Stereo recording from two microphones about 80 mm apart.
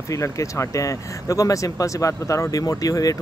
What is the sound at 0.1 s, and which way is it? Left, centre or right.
Speech, left.